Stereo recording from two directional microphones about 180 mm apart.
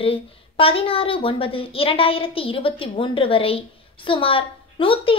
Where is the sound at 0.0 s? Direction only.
30° left (ahead or behind).